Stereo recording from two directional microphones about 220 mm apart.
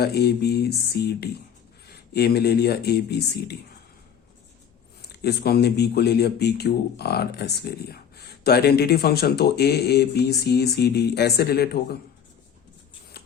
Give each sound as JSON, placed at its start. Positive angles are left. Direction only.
{"t": 0.0, "sound": "speech", "side_deg": 45}
{"t": 5.0, "sound": "speech", "side_deg": 50}
{"t": 13.2, "sound": "a sound", "side_deg": 45}